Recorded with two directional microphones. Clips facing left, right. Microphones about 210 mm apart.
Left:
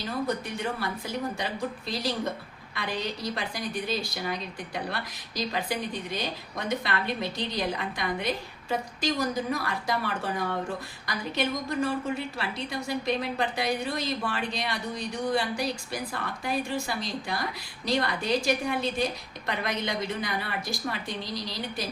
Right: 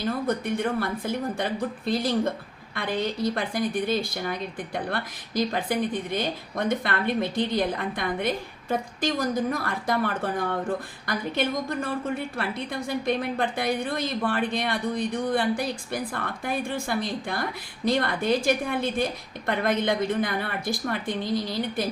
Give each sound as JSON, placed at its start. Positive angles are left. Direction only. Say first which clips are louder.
{"t": 0.0, "sound": "speech", "louder": "right 4 dB", "side_deg": -55}